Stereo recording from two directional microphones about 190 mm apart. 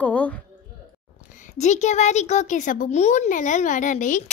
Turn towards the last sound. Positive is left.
turn(degrees=40)  # may be behind; listen again after turning